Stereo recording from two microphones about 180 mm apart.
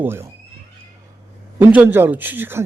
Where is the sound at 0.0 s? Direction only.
15° right (ahead or behind).